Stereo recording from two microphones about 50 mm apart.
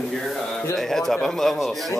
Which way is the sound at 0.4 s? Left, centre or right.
Centre.